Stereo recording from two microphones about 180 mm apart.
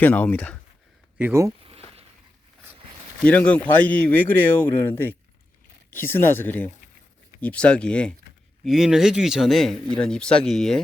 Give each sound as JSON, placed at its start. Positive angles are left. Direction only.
{"t": 0.0, "sound": "speech", "side_deg": 10}
{"t": 1.2, "sound": "speech", "side_deg": -15}
{"t": 1.6, "sound": "a sound", "side_deg": -30}
{"t": 3.2, "sound": "speech", "side_deg": 5}